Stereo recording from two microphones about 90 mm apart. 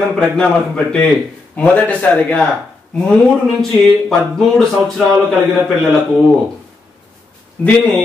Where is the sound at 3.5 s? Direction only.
5° left (ahead or behind).